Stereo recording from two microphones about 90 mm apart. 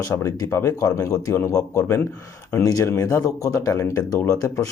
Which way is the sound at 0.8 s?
40° left (ahead or behind).